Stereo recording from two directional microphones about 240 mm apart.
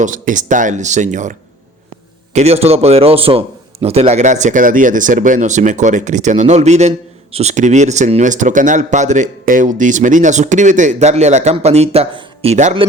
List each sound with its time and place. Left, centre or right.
0.0 s speech: right